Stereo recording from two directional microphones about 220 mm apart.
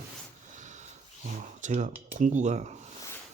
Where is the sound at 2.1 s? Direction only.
35° right (ahead or behind).